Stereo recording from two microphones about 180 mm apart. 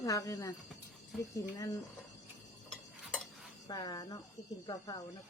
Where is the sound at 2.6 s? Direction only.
5° left (ahead or behind).